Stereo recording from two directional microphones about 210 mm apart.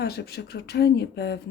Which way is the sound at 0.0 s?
50° left (ahead or behind).